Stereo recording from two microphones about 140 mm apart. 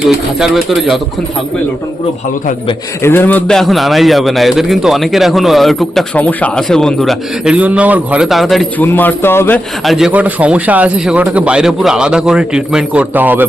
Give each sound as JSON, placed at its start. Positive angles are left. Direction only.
{"t": 0.3, "sound": "a man's voice", "side_deg": 0}
{"t": 3.0, "sound": "a man's voice", "side_deg": 15}
{"t": 8.8, "sound": "speech", "side_deg": 15}
{"t": 9.8, "sound": "a man's voice", "side_deg": 0}